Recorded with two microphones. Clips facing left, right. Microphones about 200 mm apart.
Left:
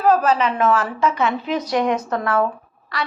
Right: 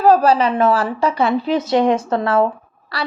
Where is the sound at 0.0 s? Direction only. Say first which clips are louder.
Right 4 dB; 35° right (ahead or behind).